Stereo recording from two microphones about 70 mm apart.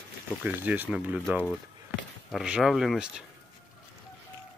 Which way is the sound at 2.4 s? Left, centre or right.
Centre.